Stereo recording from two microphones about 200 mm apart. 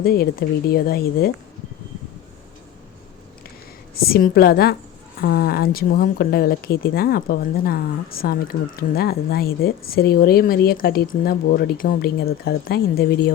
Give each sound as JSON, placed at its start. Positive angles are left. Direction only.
{"t": 0.0, "sound": "speech", "side_deg": 50}
{"t": 3.9, "sound": "speech", "side_deg": 50}